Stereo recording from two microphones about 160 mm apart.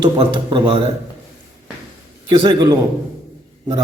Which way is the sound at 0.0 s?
30° right (ahead or behind).